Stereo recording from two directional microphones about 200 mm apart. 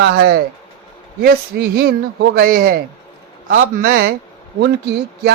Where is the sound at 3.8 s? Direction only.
55° right (ahead or behind).